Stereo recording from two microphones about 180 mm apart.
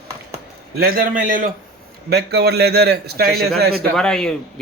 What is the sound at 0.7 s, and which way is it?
Speech, 55° right (ahead or behind).